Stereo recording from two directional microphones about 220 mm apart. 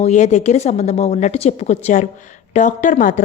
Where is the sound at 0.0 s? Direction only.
30° left (ahead or behind).